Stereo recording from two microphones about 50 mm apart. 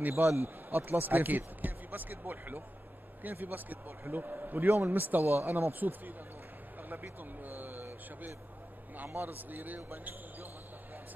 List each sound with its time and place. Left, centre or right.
0.2 s a man's voice: right
5.5 s a man's voice: right
9.1 s a man's voice: right